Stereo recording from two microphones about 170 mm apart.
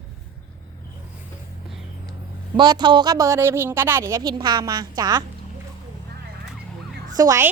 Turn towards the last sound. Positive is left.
turn(degrees=-20)  # may be behind; listen again after turning